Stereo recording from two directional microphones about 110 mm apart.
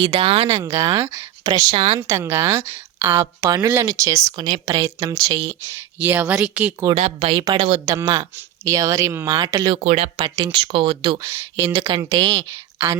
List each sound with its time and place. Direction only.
0.0 s speech: 55° right (ahead or behind)
0.5 s a woman's voice: 30° right (ahead or behind)
1.7 s speech: 60° right (ahead or behind)
2.0 s a woman's voice: 25° right (ahead or behind)
4.4 s speech: 45° right (ahead or behind)
4.7 s speech: 35° right (ahead or behind)
5.5 s speech: 20° right (ahead or behind)
6.9 s speech: 70° right (ahead or behind)
7.3 s speech: 40° right (ahead or behind)
7.9 s speech: 30° right (ahead or behind)
9.7 s speech: 85° right
10.2 s speech: 45° right (ahead or behind)
11.2 s a woman's voice: 25° right (ahead or behind)
11.6 s speech: 50° right (ahead or behind)